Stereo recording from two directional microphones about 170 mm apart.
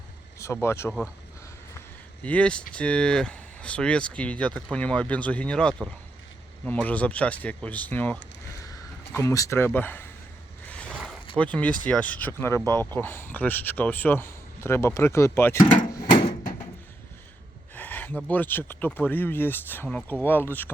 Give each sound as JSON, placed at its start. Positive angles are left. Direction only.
{"t": 0.3, "sound": "speech", "side_deg": 15}
{"t": 2.2, "sound": "speech", "side_deg": 5}
{"t": 10.7, "sound": "a sound", "side_deg": 5}
{"t": 11.3, "sound": "speech", "side_deg": 10}
{"t": 17.7, "sound": "a sound", "side_deg": 10}
{"t": 18.3, "sound": "speech", "side_deg": 10}